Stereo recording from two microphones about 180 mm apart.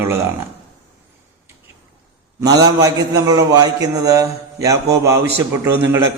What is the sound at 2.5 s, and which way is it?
A man's voice, 20° right (ahead or behind).